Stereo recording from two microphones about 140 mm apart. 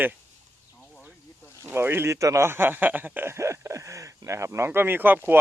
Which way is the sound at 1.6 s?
15° right (ahead or behind).